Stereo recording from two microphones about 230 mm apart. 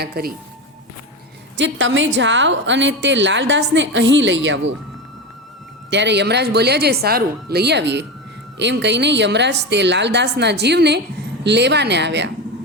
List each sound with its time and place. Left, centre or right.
0.0 s speech: right
1.5 s a woman's voice: right
5.9 s a woman's voice: right